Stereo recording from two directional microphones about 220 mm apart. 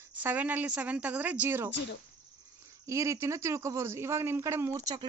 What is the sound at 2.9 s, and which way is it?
A man's voice, 15° right (ahead or behind).